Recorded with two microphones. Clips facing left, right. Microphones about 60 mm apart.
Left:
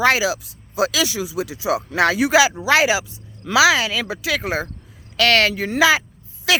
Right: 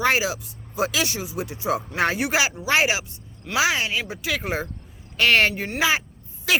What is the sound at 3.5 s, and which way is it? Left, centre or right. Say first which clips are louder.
Speech: left 7 dB; left.